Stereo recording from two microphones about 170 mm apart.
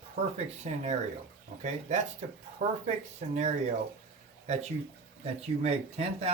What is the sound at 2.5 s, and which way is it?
Speech, 40° right (ahead or behind).